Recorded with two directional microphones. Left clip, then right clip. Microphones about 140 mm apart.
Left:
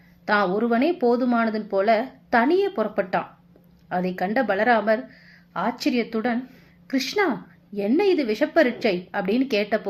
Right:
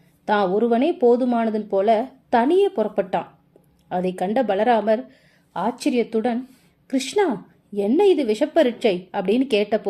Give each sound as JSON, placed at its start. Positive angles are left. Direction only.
{"t": 0.3, "sound": "a woman's voice", "side_deg": -40}